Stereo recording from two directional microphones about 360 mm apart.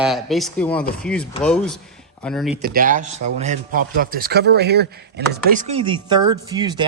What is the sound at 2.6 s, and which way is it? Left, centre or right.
Speech, right.